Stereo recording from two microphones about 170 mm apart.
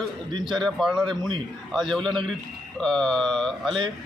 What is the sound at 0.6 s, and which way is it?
A man's voice, centre (ahead or behind).